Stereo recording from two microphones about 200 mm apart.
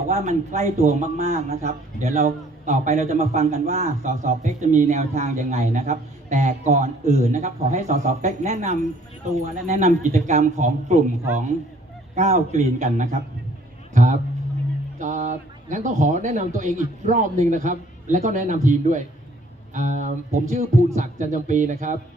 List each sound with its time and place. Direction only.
0.1 s a man's voice: 35° right (ahead or behind)
12.1 s a man's voice: 35° right (ahead or behind)
13.9 s a sound: 40° right (ahead or behind)
14.9 s a man's voice: 40° right (ahead or behind)